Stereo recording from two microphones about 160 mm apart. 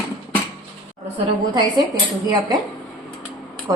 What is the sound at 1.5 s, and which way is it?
Speech, 30° right (ahead or behind).